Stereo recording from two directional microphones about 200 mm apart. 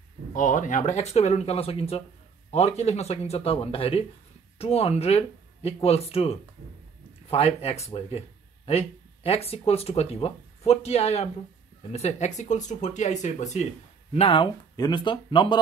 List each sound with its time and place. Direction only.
0.3 s speech: 40° left (ahead or behind); by 15.6 s 25° left (ahead or behind)